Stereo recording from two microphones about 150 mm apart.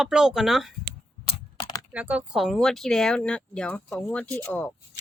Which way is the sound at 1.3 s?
35° left (ahead or behind).